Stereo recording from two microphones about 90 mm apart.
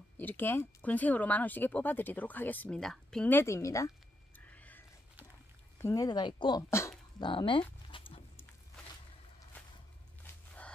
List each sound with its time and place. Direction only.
0.2 s speech: 20° left (ahead or behind)
2.8 s speech: 5° left (ahead or behind)
3.3 s a woman's voice: 30° left (ahead or behind)
4.5 s a sound: 15° left (ahead or behind)
5.9 s speech: 50° left (ahead or behind)
6.7 s speech: 30° left (ahead or behind)
7.2 s speech: 65° left (ahead or behind)
7.9 s a sound: 65° left (ahead or behind)